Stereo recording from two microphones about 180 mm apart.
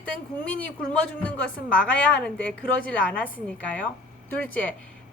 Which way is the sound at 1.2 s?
5° left (ahead or behind).